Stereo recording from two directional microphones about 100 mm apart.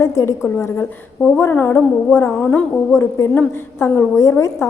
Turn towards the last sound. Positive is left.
turn(degrees=25)  # may be behind; listen again after turning